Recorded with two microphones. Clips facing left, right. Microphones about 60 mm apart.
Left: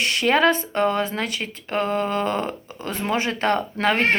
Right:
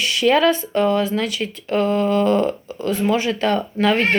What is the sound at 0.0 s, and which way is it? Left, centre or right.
Speech, left.